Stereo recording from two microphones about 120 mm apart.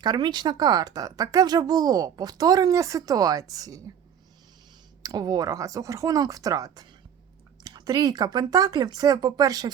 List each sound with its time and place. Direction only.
0.0 s speech: 35° right (ahead or behind)
5.0 s speech: 30° right (ahead or behind)